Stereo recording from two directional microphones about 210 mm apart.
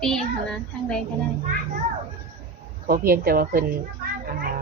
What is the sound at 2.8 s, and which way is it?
Speech, 45° right (ahead or behind).